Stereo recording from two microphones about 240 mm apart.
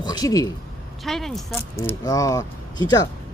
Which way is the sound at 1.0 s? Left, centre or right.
Centre.